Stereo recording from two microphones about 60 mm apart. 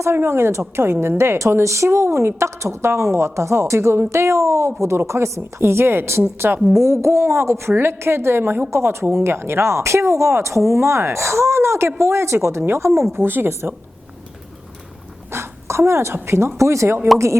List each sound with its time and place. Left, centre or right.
0.0 s a woman's voice: right
13.1 s speech: right
15.3 s a sound: right
16.1 s a woman's voice: right